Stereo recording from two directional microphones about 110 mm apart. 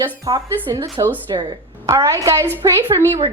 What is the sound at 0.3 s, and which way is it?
A woman's voice, 35° right (ahead or behind).